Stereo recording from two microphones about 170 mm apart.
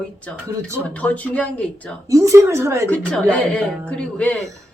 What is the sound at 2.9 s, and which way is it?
A woman's voice, 5° left (ahead or behind).